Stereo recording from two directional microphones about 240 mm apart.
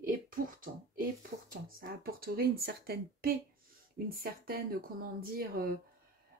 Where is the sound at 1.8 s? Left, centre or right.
Right.